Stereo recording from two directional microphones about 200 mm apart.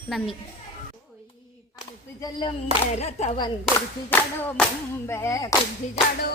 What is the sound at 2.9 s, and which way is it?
Speech, 35° left (ahead or behind).